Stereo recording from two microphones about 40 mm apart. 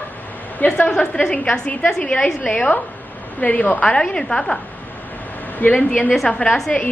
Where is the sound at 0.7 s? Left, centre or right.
Left.